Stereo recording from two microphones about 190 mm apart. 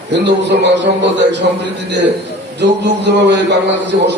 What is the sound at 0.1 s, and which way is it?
A man's voice, 65° right (ahead or behind).